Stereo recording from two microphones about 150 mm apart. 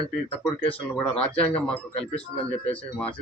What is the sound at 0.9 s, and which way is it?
Speech, 5° left (ahead or behind).